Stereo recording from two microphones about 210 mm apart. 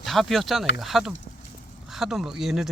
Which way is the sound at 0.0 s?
Centre (ahead or behind).